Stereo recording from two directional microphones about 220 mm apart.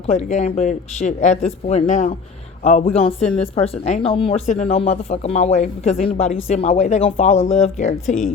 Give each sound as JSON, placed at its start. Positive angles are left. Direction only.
{"t": 0.1, "sound": "speech", "side_deg": 30}